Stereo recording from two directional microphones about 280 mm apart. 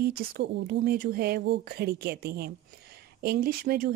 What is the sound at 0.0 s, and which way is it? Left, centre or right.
A woman's voice, right.